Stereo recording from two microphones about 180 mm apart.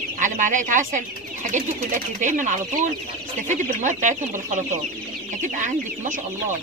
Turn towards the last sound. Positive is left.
turn(degrees=-45)  # may be behind; listen again after turning